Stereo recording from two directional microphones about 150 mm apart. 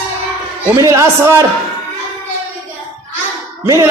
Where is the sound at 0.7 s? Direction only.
20° right (ahead or behind).